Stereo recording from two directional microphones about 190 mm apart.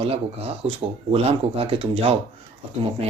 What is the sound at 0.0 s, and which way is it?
Speech, 30° right (ahead or behind).